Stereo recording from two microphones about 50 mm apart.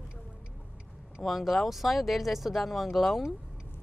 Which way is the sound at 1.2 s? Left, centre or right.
Centre.